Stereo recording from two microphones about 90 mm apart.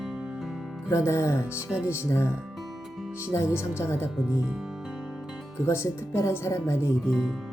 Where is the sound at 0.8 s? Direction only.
30° left (ahead or behind).